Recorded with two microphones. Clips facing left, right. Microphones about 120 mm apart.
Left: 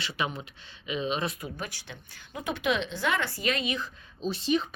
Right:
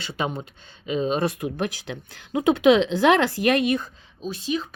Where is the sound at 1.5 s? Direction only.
80° right; by 3.8 s 60° right (ahead or behind).